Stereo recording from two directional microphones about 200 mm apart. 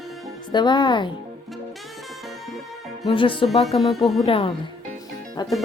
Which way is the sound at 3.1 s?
25° left (ahead or behind).